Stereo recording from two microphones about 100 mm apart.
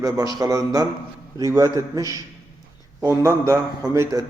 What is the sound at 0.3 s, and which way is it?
A man's voice, 35° right (ahead or behind).